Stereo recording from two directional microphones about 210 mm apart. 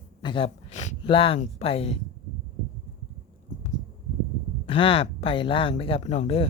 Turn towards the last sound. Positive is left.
turn(degrees=30)  # may be behind; listen again after turning